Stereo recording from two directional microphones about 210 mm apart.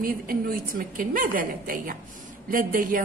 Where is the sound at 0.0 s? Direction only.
45° right (ahead or behind).